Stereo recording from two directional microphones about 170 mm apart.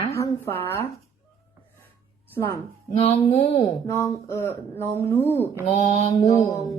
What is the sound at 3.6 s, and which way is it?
Speech, 15° left (ahead or behind).